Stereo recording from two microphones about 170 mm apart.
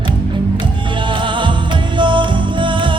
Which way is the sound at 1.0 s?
30° right (ahead or behind).